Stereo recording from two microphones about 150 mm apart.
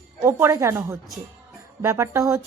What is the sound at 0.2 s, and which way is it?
Speech, 15° right (ahead or behind).